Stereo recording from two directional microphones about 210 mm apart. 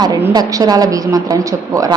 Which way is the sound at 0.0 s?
20° right (ahead or behind).